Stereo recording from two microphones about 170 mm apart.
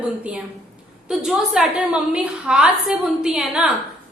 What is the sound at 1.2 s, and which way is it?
A woman's voice, 5° right (ahead or behind).